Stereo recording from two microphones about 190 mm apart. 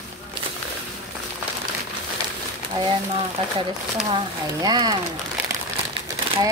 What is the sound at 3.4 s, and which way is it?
Speech, 30° right (ahead or behind).